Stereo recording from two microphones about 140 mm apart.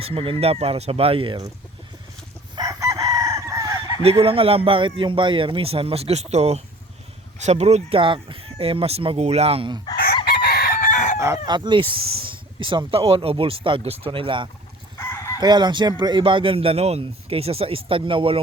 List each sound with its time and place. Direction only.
0.0 s speech: 45° right (ahead or behind)
2.6 s chicken: 25° right (ahead or behind)
4.0 s speech: 45° right (ahead or behind)
10.2 s chicken: 90° left; by 11.2 s 60° left (ahead or behind)
11.4 s speech: 30° right (ahead or behind)
14.9 s crowing: 15° left (ahead or behind)
15.4 s speech: 30° right (ahead or behind)